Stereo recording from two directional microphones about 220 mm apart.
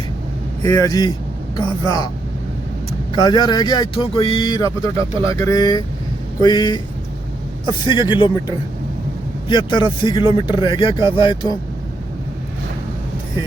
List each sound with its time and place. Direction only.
0.6 s speech: 15° left (ahead or behind)
3.2 s a man's voice: 20° left (ahead or behind)